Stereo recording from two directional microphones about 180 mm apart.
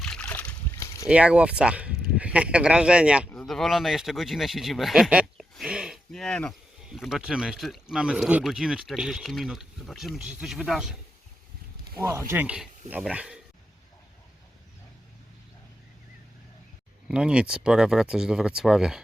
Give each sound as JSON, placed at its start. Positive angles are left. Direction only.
{"t": 0.0, "sound": "splash", "side_deg": 5}
{"t": 1.0, "sound": "speech", "side_deg": -5}
{"t": 5.4, "sound": "a sound", "side_deg": -5}
{"t": 6.9, "sound": "speech", "side_deg": 0}
{"t": 12.0, "sound": "speech", "side_deg": -15}
{"t": 17.1, "sound": "speech", "side_deg": -5}